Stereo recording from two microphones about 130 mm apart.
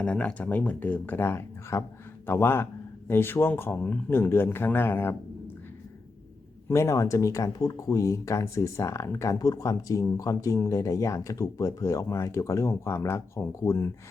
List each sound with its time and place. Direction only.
0.0 s speech: 10° left (ahead or behind)
6.7 s speech: 20° left (ahead or behind)